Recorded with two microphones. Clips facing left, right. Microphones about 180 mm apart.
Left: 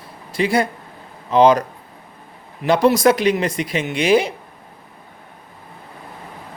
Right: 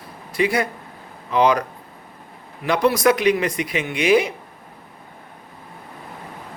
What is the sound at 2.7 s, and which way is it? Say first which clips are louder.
Speech: left 3 dB; 30° left (ahead or behind).